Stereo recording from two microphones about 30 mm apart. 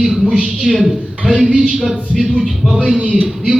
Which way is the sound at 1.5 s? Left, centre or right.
Right.